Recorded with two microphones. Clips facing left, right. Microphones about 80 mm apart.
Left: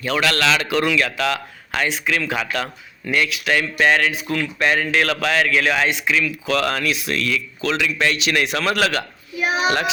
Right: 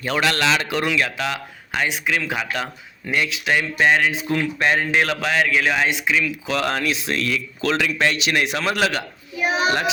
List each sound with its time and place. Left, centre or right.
0.0 s speech: right
3.1 s speech: right